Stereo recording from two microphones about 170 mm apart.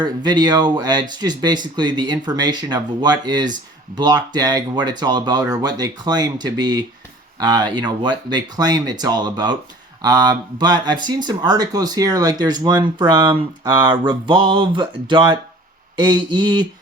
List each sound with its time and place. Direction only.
0.0 s speech: 25° right (ahead or behind)